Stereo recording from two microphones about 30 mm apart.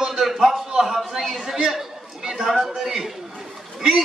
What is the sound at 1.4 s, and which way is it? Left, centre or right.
A woman's voice, right.